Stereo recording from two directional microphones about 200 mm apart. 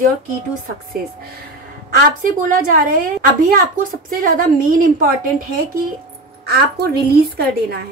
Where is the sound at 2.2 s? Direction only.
45° right (ahead or behind).